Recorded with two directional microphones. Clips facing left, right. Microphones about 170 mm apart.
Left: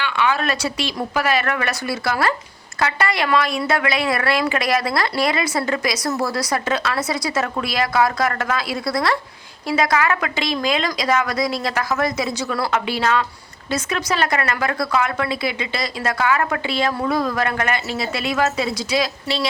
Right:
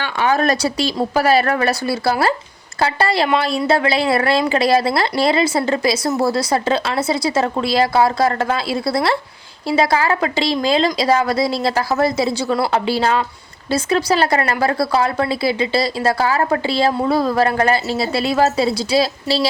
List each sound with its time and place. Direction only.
0.0 s a woman's voice: 40° right (ahead or behind)